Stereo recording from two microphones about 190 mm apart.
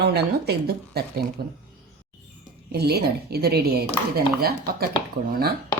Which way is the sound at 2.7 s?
60° right (ahead or behind).